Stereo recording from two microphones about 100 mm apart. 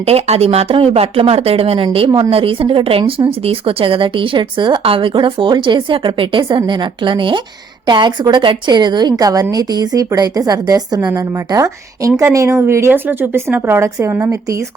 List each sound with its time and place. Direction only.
0.0 s a woman's voice: 90° right; by 4.8 s 50° right (ahead or behind)
4.8 s a woman's voice: 65° right (ahead or behind); by 14.6 s 25° right (ahead or behind)